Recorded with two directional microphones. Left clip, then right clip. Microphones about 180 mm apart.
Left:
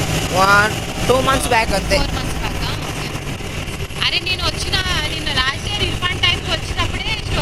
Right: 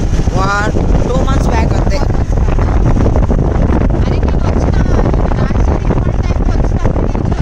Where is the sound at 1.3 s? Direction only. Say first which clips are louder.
Left 1 dB; 15° right (ahead or behind).